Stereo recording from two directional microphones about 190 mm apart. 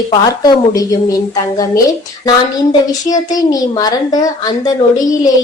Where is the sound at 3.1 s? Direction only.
20° left (ahead or behind).